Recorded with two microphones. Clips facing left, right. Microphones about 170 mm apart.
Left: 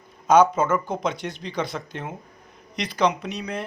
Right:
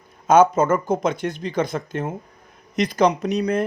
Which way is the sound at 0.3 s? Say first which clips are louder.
Right 2 dB; 45° right (ahead or behind).